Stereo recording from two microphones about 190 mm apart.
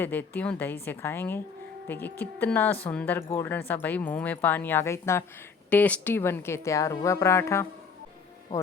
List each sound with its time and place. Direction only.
0.0 s speech: 10° left (ahead or behind)